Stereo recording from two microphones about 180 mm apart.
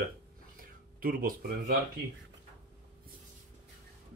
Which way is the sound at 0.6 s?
50° right (ahead or behind).